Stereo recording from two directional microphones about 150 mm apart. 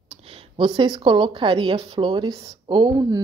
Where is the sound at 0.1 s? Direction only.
40° right (ahead or behind).